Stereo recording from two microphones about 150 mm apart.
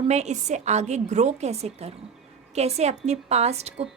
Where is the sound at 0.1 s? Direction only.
50° right (ahead or behind).